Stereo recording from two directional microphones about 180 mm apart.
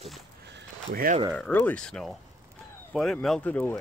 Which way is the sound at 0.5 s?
55° right (ahead or behind).